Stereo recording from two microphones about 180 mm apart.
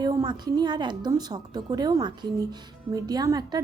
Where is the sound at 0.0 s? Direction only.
20° right (ahead or behind).